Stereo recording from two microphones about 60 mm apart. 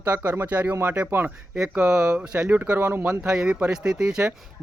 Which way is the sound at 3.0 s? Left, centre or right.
Centre.